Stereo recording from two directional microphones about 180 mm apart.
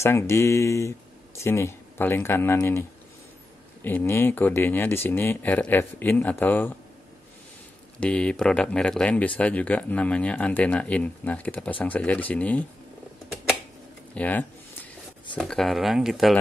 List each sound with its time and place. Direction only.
0.0 s speech: 15° left (ahead or behind)
3.8 s speech: 10° left (ahead or behind)
8.0 s speech: 5° left (ahead or behind)
14.1 s a sound: 10° left (ahead or behind)
15.3 s speech: 5° left (ahead or behind)